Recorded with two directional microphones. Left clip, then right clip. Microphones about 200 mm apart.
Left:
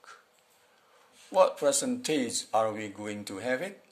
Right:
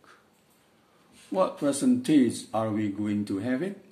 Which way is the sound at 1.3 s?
45° left (ahead or behind).